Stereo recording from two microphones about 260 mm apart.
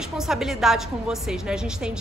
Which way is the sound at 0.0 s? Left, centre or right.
Centre.